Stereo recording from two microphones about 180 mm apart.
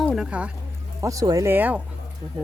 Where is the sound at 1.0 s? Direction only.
20° right (ahead or behind).